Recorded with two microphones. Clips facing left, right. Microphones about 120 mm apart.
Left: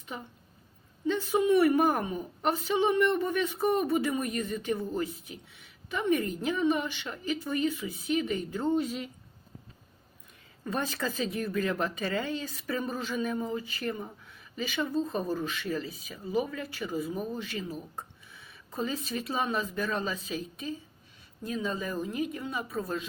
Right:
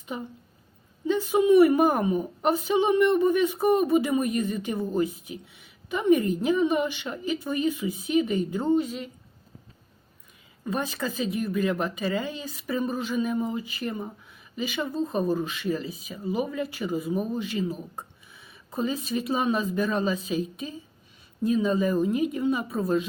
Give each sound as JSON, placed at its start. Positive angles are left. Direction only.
{"t": 0.1, "sound": "a woman's voice", "side_deg": -10}
{"t": 8.7, "sound": "speech", "side_deg": 0}
{"t": 10.6, "sound": "a woman's voice", "side_deg": -10}